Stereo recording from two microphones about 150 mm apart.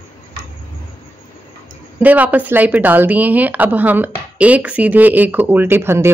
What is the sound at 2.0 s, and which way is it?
Speech, 10° right (ahead or behind).